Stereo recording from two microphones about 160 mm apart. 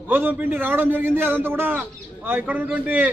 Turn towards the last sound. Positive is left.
turn(degrees=-10)  # may be behind; listen again after turning